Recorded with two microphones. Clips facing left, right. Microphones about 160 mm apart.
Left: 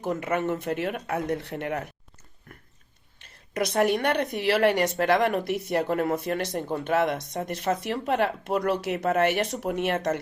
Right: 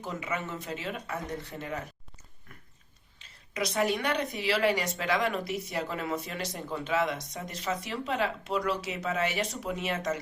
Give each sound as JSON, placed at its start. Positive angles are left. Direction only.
{"t": 0.0, "sound": "a woman's voice", "side_deg": 55}
{"t": 3.2, "sound": "a woman's voice", "side_deg": 55}